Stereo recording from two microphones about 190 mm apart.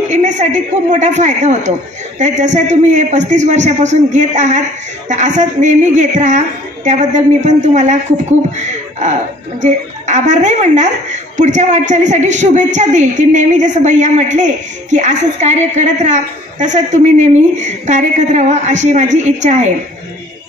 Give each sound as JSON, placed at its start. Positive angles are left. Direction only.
{"t": 0.1, "sound": "a woman's voice", "side_deg": -40}